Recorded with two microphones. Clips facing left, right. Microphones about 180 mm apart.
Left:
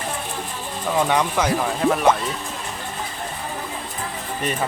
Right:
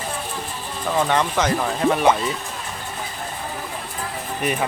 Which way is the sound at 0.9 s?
10° left (ahead or behind).